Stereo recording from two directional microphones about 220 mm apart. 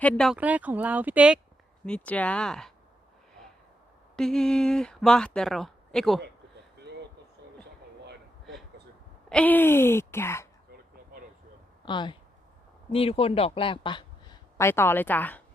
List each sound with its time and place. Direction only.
0.0 s speech: centre (ahead or behind)
1.8 s speech: 5° left (ahead or behind)
4.2 s speech: 5° left (ahead or behind)
9.3 s speech: 5° left (ahead or behind)
11.9 s a woman's voice: 20° left (ahead or behind)
14.7 s speech: 10° left (ahead or behind)